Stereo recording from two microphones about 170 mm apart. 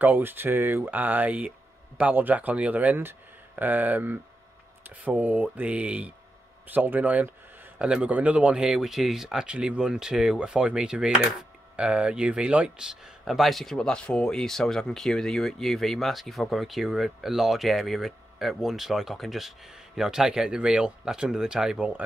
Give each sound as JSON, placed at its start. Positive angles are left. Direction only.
{"t": 0.0, "sound": "speech", "side_deg": -10}